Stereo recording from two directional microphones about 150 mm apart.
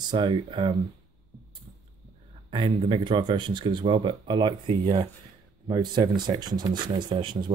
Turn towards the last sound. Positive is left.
turn(degrees=-30)  # may be behind; listen again after turning